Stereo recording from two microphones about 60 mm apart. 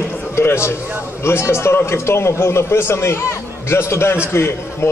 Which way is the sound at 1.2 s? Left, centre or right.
Left.